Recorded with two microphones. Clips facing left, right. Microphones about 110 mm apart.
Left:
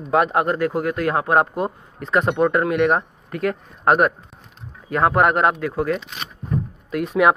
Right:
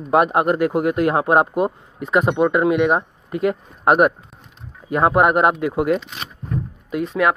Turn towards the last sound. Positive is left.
turn(degrees=0)  # may be behind; listen again after turning